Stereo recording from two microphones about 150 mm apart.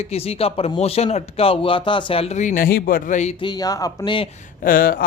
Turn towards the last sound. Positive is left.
turn(degrees=75)  # may be behind; listen again after turning